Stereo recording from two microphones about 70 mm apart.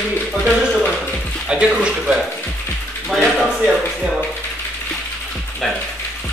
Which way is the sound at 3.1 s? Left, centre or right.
Centre.